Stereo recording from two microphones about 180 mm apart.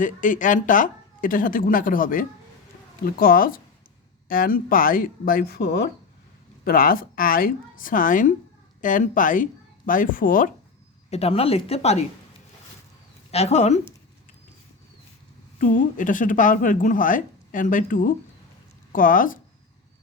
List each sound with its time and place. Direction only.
0.0 s speech: 45° left (ahead or behind); by 5.9 s 65° left (ahead or behind)
6.7 s speech: 50° left (ahead or behind)
11.1 s speech: 35° left (ahead or behind)
13.3 s speech: 40° left (ahead or behind)
15.6 s speech: 45° left (ahead or behind)